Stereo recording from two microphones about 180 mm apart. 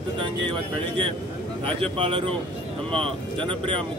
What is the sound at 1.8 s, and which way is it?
Speech, 30° right (ahead or behind).